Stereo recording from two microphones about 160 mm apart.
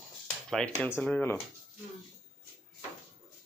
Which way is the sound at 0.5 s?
5° left (ahead or behind).